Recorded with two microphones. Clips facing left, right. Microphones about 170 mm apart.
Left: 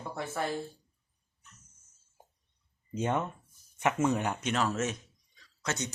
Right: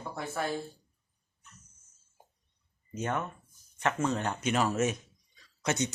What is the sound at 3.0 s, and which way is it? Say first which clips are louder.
Speech: left 2 dB; 20° left (ahead or behind).